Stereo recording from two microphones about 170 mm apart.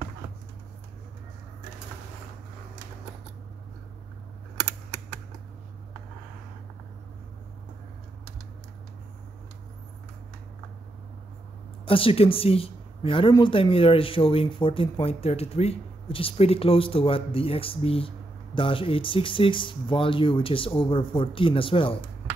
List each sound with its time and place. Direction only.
11.8 s a woman's voice: 30° left (ahead or behind)